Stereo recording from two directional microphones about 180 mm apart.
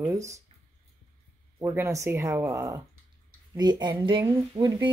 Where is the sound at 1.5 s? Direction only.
15° right (ahead or behind).